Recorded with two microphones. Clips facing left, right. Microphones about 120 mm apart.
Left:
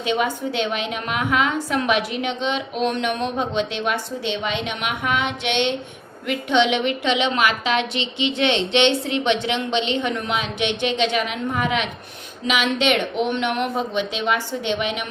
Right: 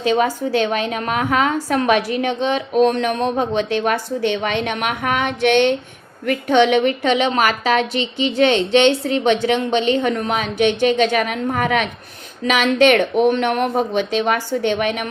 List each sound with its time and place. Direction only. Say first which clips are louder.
0.0 s a woman's voice: right 5 dB; 35° right (ahead or behind)